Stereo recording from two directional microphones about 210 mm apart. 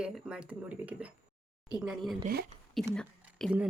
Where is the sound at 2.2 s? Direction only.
45° right (ahead or behind).